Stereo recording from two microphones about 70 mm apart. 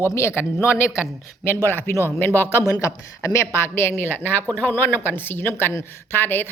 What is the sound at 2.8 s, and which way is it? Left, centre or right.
Speech, left.